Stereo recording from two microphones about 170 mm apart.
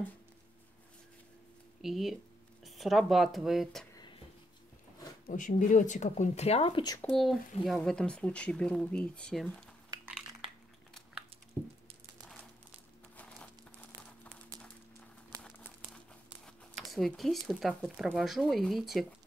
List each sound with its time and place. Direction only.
1.8 s speech: centre (ahead or behind)
3.9 s a sound: 25° left (ahead or behind)
5.2 s speech: 50° left (ahead or behind); by 7.0 s 25° left (ahead or behind)
7.0 s speech: centre (ahead or behind)
13.1 s crumpling: 10° left (ahead or behind)
14.5 s a sound: 20° right (ahead or behind)
15.4 s crumpling: 5° left (ahead or behind)
16.4 s speech: centre (ahead or behind)